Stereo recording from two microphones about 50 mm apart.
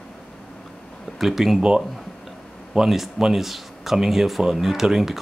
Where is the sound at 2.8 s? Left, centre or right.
Centre.